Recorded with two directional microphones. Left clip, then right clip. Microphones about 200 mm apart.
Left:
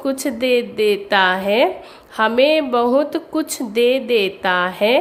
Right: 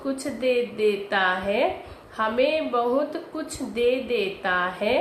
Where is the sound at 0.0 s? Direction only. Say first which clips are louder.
Left 6 dB; 55° left (ahead or behind).